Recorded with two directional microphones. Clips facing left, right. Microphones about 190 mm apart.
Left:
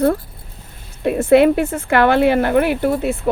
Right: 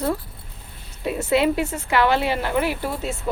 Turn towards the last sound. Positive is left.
turn(degrees=60)  # may be behind; listen again after turning